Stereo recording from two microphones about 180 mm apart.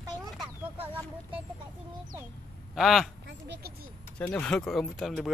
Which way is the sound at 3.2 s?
75° right (ahead or behind).